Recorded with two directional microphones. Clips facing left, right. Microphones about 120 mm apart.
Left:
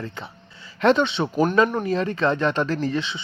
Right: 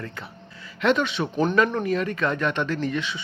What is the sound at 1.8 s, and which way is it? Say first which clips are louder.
Speech: left 2 dB; 30° left (ahead or behind).